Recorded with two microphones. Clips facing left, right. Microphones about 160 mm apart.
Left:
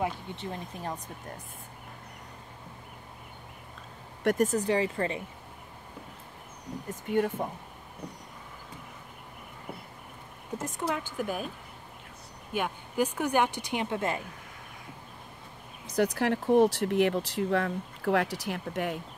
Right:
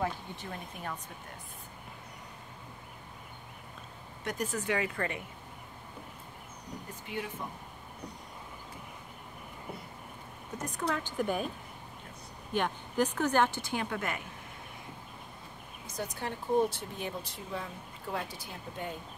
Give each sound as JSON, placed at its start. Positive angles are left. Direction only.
{"t": 0.0, "sound": "speech", "side_deg": 25}
{"t": 4.2, "sound": "speech", "side_deg": 50}
{"t": 6.9, "sound": "speech", "side_deg": 50}
{"t": 10.9, "sound": "a woman's voice", "side_deg": 5}
{"t": 12.5, "sound": "a woman's voice", "side_deg": 10}
{"t": 16.0, "sound": "speech", "side_deg": 80}